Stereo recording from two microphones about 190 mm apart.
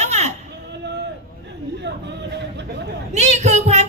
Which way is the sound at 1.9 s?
65° right (ahead or behind).